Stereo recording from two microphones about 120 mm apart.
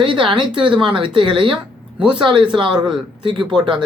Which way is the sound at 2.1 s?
40° right (ahead or behind).